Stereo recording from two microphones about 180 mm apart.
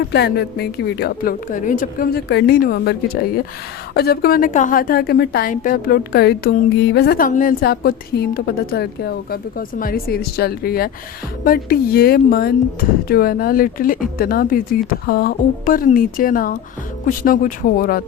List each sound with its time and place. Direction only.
0.1 s a woman's voice: 65° left (ahead or behind)